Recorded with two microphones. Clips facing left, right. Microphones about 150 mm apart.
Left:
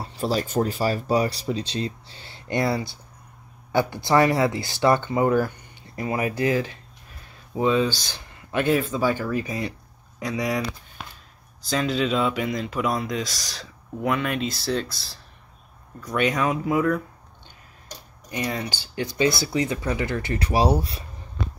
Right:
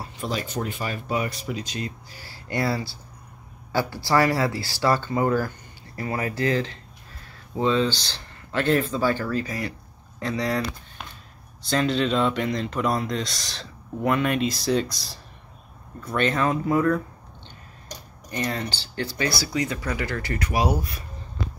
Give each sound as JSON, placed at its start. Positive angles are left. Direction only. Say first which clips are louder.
{"t": 0.0, "sound": "speech", "louder": "left 4 dB", "side_deg": 35}
{"t": 11.6, "sound": "speech", "louder": "right 1 dB", "side_deg": 0}
{"t": 16.2, "sound": "speech", "louder": "even", "side_deg": 10}
{"t": 18.3, "sound": "speech", "louder": "even", "side_deg": 10}